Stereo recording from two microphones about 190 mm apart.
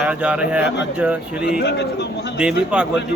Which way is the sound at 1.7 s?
60° left (ahead or behind).